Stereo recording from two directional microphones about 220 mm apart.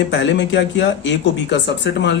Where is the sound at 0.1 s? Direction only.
55° left (ahead or behind).